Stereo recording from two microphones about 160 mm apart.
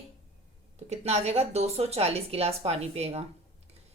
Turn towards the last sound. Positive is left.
turn(degrees=-40)  # may be behind; listen again after turning